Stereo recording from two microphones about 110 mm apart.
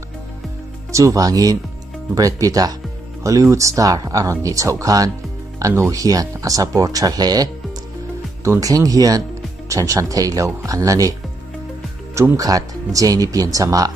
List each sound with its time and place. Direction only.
0.9 s speech: 30° right (ahead or behind)
8.5 s speech: 35° right (ahead or behind)
12.2 s speech: 35° right (ahead or behind)